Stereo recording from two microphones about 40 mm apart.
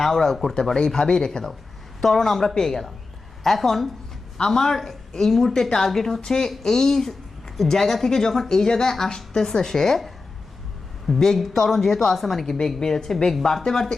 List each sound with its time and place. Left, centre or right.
0.0 s a woman's voice: centre
6.2 s a woman's voice: centre
11.1 s a woman's voice: centre